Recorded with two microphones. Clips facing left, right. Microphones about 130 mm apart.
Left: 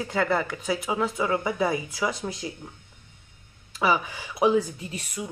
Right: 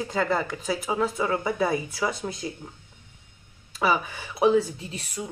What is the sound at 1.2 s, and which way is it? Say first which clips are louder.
Speech: even; 25° right (ahead or behind).